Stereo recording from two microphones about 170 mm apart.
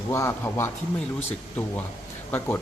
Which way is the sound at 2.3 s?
10° left (ahead or behind).